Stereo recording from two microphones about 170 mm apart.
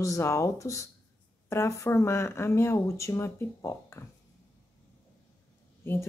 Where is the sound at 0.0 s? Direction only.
20° left (ahead or behind).